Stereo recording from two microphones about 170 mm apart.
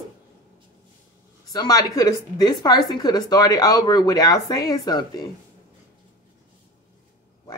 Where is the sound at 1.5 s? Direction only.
20° left (ahead or behind).